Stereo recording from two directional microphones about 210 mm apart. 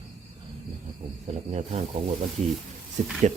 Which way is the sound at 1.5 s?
30° right (ahead or behind).